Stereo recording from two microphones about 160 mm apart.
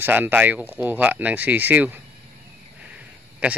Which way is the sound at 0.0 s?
10° right (ahead or behind).